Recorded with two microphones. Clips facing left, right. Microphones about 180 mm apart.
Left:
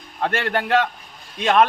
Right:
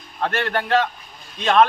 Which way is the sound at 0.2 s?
15° left (ahead or behind).